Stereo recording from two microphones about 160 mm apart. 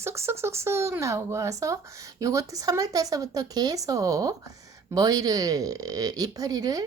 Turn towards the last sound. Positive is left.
turn(degrees=-25)  # may be behind; listen again after turning